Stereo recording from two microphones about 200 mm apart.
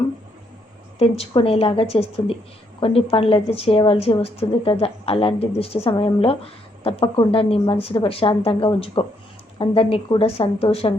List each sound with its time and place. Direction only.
0.9 s a woman's voice: 30° left (ahead or behind)